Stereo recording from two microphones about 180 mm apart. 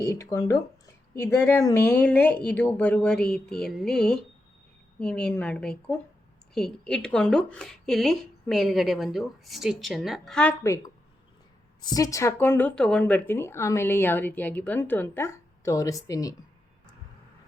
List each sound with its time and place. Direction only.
0.0 s a woman's voice: 20° left (ahead or behind)
11.8 s speech: 20° left (ahead or behind)